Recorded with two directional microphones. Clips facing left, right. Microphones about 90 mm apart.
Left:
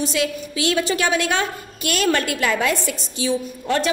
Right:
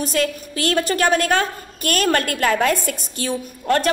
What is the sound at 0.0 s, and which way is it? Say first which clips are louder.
A woman's voice: right 1 dB; 45° right (ahead or behind).